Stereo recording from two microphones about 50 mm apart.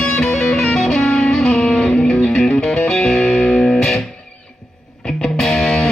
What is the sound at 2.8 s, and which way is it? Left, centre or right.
Music, centre.